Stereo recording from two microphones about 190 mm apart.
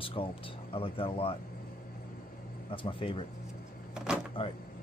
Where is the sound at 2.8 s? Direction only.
30° left (ahead or behind).